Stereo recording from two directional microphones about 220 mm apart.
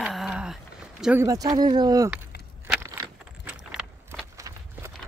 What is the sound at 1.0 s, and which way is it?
Speech, 10° right (ahead or behind).